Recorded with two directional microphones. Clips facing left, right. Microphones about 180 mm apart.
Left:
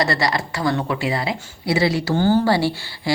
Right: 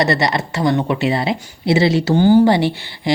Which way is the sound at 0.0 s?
20° right (ahead or behind).